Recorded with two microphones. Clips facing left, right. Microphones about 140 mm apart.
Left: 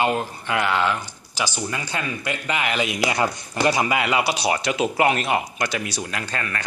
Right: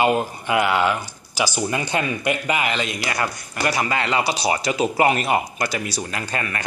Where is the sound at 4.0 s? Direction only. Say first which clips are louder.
Even; 10° left (ahead or behind); by 6.7 s 10° right (ahead or behind).